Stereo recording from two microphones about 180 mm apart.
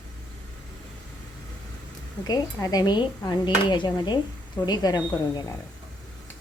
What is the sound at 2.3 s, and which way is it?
Speech, 20° left (ahead or behind).